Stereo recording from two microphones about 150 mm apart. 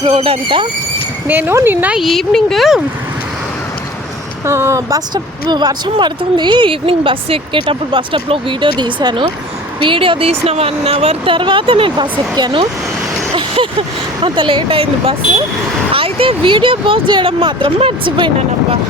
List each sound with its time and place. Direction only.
0.0 s speech: 40° right (ahead or behind)
1.3 s speech: 15° right (ahead or behind)
4.4 s a woman's voice: 20° right (ahead or behind); by 18.8 s 35° right (ahead or behind)